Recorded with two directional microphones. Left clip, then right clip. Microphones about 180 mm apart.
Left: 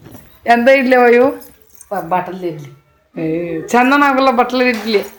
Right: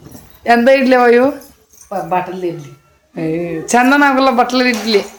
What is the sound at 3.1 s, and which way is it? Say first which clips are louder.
A man's voice: even; centre (ahead or behind).